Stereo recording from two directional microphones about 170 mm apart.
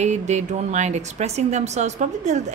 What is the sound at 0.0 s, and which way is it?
Speech, 45° right (ahead or behind).